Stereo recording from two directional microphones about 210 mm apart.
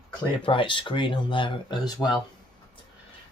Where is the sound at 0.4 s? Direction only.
25° left (ahead or behind).